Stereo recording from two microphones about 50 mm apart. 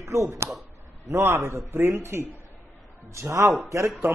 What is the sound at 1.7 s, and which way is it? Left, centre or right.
Speech, right.